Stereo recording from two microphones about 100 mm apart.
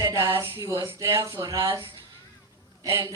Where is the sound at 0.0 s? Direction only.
30° right (ahead or behind).